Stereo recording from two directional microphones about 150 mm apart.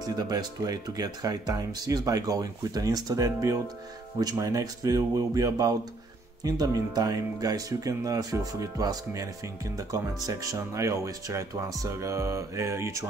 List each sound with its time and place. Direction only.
0.0 s speech: 25° right (ahead or behind)